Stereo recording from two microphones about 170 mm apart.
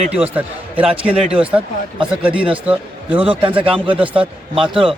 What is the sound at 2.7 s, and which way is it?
Speech, 5° right (ahead or behind).